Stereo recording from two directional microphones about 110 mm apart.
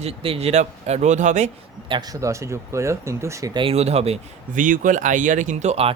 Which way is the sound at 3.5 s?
60° right (ahead or behind).